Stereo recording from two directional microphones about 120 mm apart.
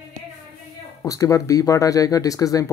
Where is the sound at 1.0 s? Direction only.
25° left (ahead or behind).